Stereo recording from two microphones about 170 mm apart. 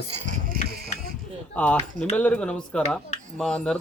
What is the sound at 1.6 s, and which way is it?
Speech, 10° left (ahead or behind).